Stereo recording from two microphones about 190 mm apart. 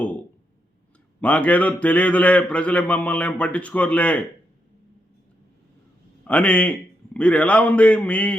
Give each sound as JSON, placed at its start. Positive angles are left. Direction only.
{"t": 1.2, "sound": "a man's voice", "side_deg": 5}
{"t": 6.2, "sound": "a man's voice", "side_deg": 5}